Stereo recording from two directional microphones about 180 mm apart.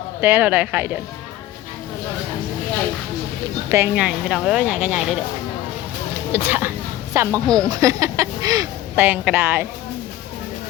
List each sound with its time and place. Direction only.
0.2 s speech: 10° right (ahead or behind)
3.7 s speech: 10° right (ahead or behind)
6.3 s a woman's voice: 10° right (ahead or behind)
7.4 s speech: 5° left (ahead or behind)
7.7 s speech: 20° right (ahead or behind)